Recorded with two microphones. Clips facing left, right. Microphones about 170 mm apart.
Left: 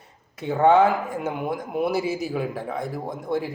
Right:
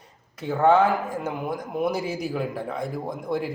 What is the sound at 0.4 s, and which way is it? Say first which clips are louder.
Speech: left 1 dB; 55° left (ahead or behind).